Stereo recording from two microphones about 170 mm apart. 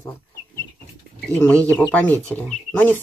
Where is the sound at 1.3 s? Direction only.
10° left (ahead or behind).